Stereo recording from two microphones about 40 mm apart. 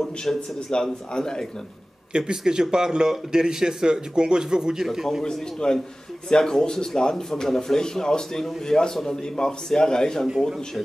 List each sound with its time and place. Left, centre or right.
0.0 s speech: centre
2.1 s speech: right
4.8 s a man's voice: centre
5.2 s a man's voice: centre